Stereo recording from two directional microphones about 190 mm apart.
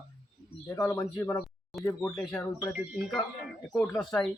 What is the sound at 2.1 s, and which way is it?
Speech, centre (ahead or behind).